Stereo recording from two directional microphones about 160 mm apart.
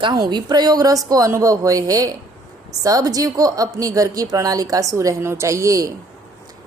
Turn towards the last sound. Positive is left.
turn(degrees=-20)  # may be behind; listen again after turning